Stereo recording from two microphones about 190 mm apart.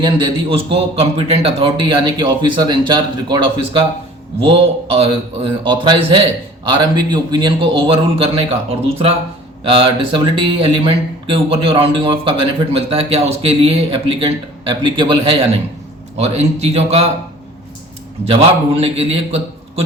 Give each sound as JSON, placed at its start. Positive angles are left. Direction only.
{"t": 0.5, "sound": "speech", "side_deg": -30}
{"t": 9.6, "sound": "a man's voice", "side_deg": -30}
{"t": 18.3, "sound": "a man's voice", "side_deg": -30}